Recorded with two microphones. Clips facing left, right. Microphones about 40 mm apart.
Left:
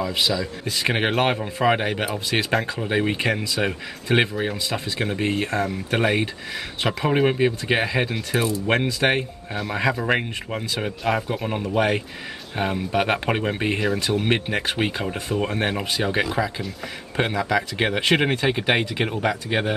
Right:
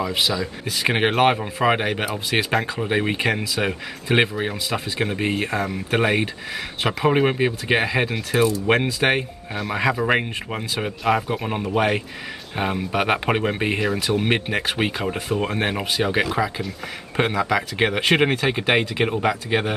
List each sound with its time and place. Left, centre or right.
0.0 s speech: centre
0.7 s speech: centre